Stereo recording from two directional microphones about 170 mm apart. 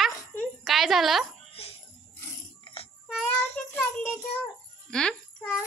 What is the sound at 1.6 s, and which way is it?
Music, 35° left (ahead or behind).